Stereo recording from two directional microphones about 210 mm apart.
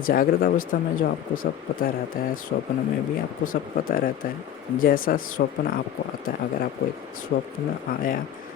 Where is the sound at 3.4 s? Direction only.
40° left (ahead or behind).